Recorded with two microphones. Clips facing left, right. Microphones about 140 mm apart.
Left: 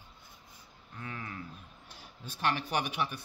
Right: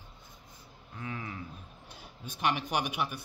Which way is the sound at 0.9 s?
15° right (ahead or behind).